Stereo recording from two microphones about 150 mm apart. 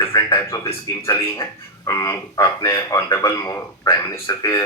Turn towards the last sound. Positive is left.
turn(degrees=15)  # may be behind; listen again after turning